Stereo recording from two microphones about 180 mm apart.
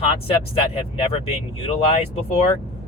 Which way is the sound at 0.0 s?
30° left (ahead or behind).